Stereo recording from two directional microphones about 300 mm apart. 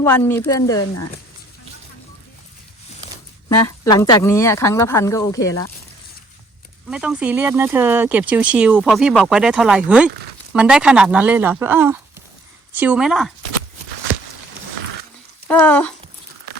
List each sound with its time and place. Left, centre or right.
0.0 s speech: centre
3.8 s speech: centre
6.8 s speech: centre
15.4 s speech: centre